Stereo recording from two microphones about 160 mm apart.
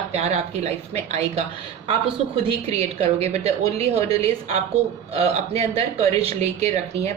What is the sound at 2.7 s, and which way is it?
A woman's voice, 40° right (ahead or behind).